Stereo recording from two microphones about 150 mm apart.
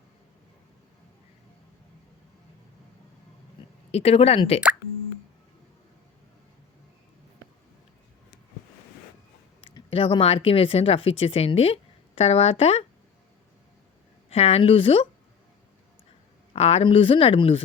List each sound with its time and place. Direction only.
3.9 s speech: 40° left (ahead or behind)
9.6 s speech: 35° left (ahead or behind)
14.3 s speech: 40° left (ahead or behind)
16.5 s speech: 45° left (ahead or behind)